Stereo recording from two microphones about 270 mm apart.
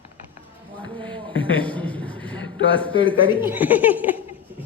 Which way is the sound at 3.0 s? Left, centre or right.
Centre.